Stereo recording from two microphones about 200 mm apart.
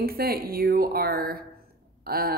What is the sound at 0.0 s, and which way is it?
A woman's voice, 50° right (ahead or behind).